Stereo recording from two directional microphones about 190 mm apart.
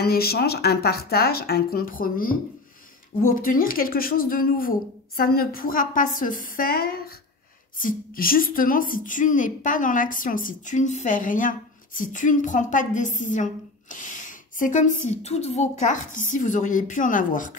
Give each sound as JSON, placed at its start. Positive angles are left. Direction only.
{"t": 0.0, "sound": "a woman's voice", "side_deg": 55}
{"t": 3.3, "sound": "a woman's voice", "side_deg": 45}